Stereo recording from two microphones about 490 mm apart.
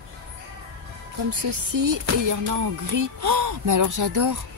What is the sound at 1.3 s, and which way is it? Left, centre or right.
Music, right.